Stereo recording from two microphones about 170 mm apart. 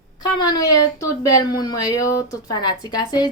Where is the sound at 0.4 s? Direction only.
25° left (ahead or behind).